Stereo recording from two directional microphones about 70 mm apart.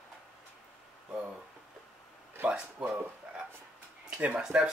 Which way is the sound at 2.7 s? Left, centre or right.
Right.